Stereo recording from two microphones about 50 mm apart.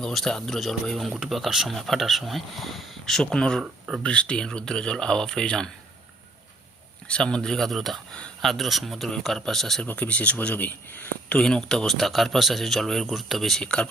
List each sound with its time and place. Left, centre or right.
0.0 s a man's voice: centre
3.2 s speech: centre
7.1 s speech: centre
7.7 s a man's voice: centre
9.8 s speech: left
11.3 s a man's voice: centre
13.6 s speech: centre